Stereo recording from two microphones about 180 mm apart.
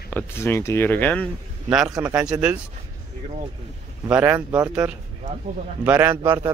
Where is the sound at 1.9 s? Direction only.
20° right (ahead or behind).